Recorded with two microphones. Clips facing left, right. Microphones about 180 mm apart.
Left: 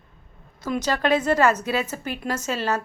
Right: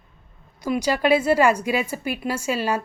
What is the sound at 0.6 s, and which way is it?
Speech, 10° right (ahead or behind).